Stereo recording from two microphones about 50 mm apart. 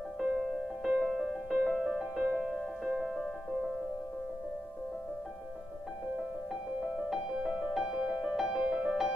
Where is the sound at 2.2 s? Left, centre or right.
Right.